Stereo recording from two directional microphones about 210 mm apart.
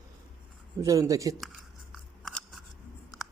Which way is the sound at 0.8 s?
15° right (ahead or behind).